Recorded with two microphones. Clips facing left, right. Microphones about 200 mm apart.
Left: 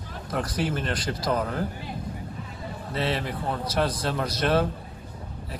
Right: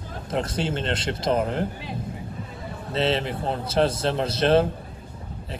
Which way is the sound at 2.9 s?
25° right (ahead or behind).